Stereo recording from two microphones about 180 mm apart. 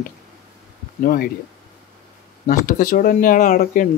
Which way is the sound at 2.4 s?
45° left (ahead or behind).